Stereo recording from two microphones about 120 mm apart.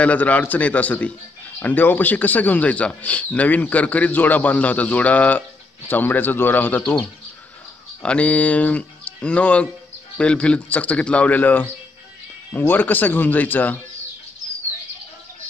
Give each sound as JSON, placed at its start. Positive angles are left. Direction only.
{"t": 0.0, "sound": "speech", "side_deg": 10}